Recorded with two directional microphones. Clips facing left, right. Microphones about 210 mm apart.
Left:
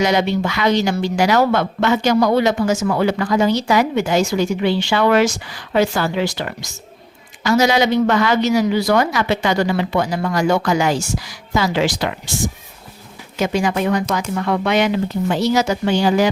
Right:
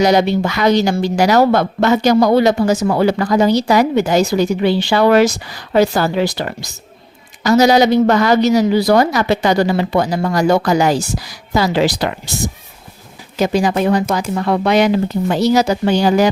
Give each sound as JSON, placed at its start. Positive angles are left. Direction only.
{"t": 0.0, "sound": "speech", "side_deg": -40}
{"t": 13.4, "sound": "speech", "side_deg": -35}